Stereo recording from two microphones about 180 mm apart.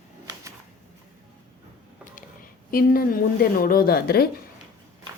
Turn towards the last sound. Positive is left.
turn(degrees=60)  # may be behind; listen again after turning